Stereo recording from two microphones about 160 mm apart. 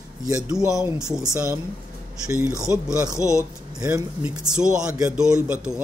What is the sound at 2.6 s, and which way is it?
Speech, 20° left (ahead or behind).